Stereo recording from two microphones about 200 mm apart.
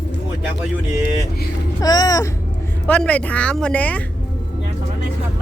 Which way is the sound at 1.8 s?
20° left (ahead or behind).